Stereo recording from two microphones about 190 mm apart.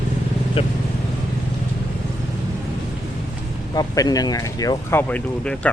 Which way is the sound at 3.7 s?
20° left (ahead or behind).